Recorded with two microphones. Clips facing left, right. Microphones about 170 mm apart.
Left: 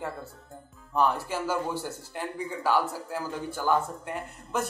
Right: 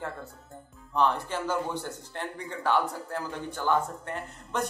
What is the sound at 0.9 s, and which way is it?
A man's voice, 10° left (ahead or behind).